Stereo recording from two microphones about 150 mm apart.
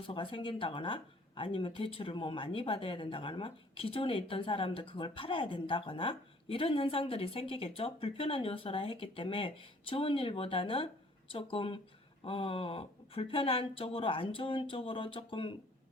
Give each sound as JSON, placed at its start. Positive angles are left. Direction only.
{"t": 0.1, "sound": "speech", "side_deg": 35}